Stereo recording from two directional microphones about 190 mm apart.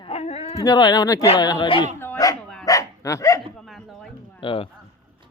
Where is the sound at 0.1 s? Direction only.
35° left (ahead or behind).